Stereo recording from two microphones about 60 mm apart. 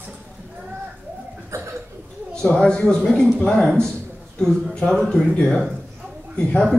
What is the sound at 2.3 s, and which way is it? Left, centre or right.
A man's voice, centre.